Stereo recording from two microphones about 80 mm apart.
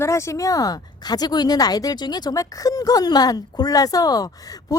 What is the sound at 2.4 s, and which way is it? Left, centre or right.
Speech, left.